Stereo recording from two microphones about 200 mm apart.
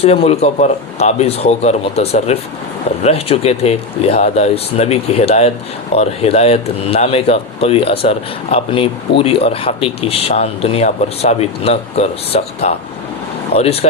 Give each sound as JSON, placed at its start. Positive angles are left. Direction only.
{"t": 0.0, "sound": "a man's voice", "side_deg": 30}